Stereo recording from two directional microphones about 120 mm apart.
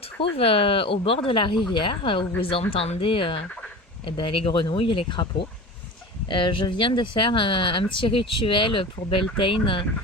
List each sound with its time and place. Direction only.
0.2 s speech: 50° left (ahead or behind)